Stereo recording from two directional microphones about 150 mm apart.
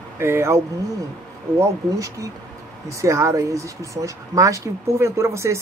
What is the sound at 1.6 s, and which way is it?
Speech, 20° right (ahead or behind).